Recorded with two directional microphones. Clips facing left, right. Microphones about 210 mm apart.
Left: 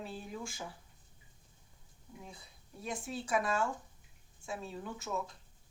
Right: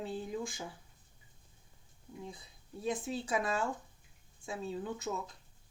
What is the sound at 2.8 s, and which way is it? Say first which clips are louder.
Speech: right 4 dB; 20° right (ahead or behind).